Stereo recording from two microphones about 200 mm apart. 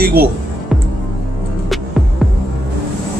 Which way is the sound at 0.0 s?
50° right (ahead or behind).